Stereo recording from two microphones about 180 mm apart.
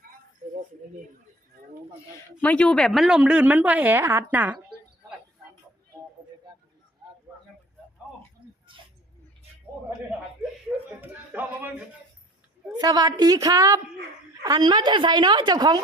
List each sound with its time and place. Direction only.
2.4 s a woman's voice: 5° left (ahead or behind); by 4.5 s 10° right (ahead or behind)
7.3 s a sound: 15° right (ahead or behind)
11.0 s a woman's voice: 10° right (ahead or behind)
12.8 s a woman's voice: 20° right (ahead or behind)